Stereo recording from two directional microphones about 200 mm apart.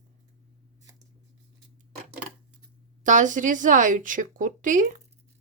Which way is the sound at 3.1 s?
40° right (ahead or behind).